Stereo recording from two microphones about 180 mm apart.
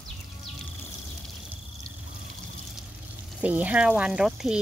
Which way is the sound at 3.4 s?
10° right (ahead or behind).